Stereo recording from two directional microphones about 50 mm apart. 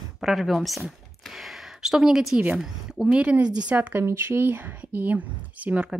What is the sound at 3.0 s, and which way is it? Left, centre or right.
Speech, right.